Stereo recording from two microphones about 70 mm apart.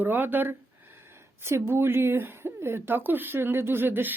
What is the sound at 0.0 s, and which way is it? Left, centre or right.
A woman's voice, right.